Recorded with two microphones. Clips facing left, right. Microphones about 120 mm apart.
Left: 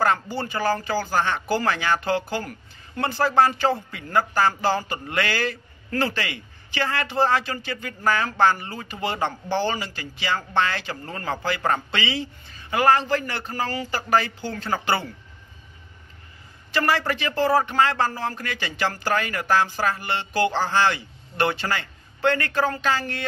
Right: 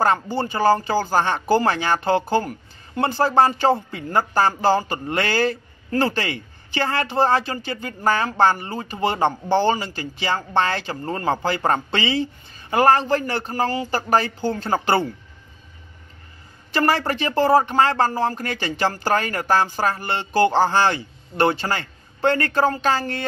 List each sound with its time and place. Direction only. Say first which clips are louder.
0.0 s speech: right 3 dB; 25° right (ahead or behind)
16.7 s speech: right 3 dB; 35° right (ahead or behind)